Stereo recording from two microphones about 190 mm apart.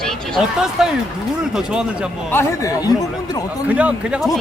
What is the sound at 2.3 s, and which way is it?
Speech, 15° left (ahead or behind).